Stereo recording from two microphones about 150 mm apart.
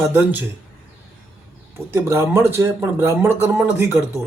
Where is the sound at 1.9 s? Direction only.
15° right (ahead or behind).